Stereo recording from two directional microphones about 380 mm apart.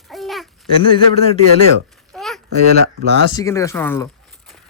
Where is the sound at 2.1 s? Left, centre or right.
Centre.